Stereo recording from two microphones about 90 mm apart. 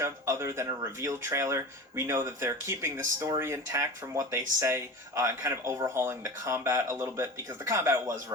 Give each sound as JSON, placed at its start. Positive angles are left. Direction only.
{"t": 0.0, "sound": "speech", "side_deg": -30}